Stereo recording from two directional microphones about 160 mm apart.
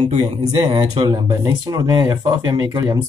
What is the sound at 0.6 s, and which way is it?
Speech, 30° right (ahead or behind).